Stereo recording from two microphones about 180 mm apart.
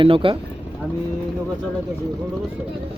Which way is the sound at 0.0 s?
30° right (ahead or behind).